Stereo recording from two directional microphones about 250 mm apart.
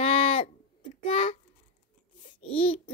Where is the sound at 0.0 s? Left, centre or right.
Left.